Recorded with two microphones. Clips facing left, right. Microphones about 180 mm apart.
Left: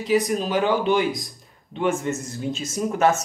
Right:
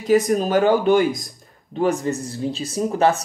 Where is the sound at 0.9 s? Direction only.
Centre (ahead or behind).